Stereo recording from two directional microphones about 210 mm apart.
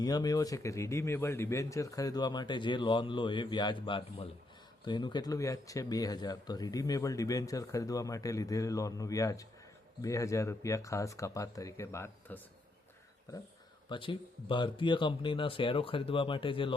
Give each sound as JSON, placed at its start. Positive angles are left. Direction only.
{"t": 0.0, "sound": "speech", "side_deg": 20}
{"t": 13.9, "sound": "speech", "side_deg": 25}